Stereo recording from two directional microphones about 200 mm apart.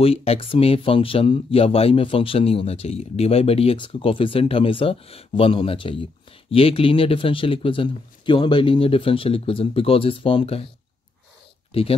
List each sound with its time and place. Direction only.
0.0 s speech: 30° left (ahead or behind)